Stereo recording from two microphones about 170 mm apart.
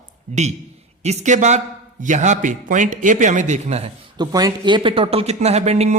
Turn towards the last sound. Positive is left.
turn(degrees=-40)  # may be behind; listen again after turning